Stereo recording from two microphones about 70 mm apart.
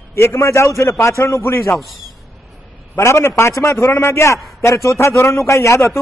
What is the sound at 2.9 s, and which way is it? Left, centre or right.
A man's voice, left.